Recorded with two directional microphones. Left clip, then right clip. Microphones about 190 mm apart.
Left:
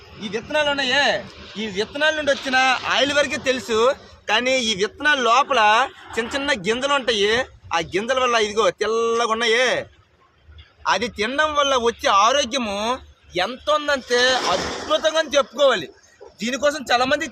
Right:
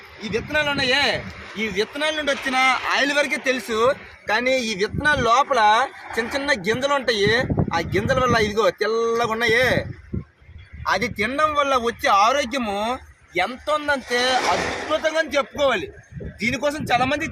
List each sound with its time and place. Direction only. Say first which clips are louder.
0.3 s a man's voice: left 1 dB; centre (ahead or behind)
10.8 s a man's voice: left 1 dB; centre (ahead or behind)
14.3 s speech: right 1 dB; 45° right (ahead or behind)
14.8 s a man's voice: left 4 dB; 10° left (ahead or behind)